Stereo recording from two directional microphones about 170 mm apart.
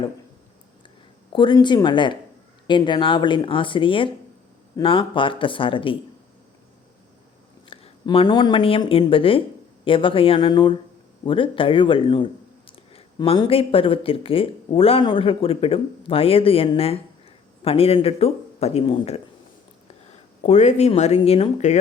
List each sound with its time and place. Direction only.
1.3 s speech: 25° left (ahead or behind)
7.7 s speech: 30° left (ahead or behind)
20.4 s speech: 45° left (ahead or behind)